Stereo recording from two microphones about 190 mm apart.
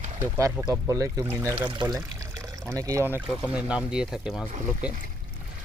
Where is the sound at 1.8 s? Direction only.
20° right (ahead or behind); by 4.4 s 5° right (ahead or behind).